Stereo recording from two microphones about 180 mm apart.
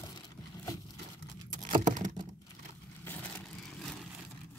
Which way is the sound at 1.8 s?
45° right (ahead or behind).